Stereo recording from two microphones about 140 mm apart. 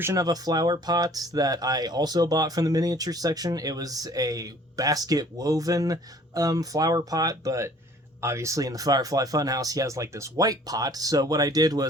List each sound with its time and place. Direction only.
0.0 s speech: 25° right (ahead or behind)